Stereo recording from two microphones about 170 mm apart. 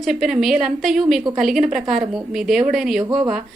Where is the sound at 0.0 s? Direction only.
Centre (ahead or behind).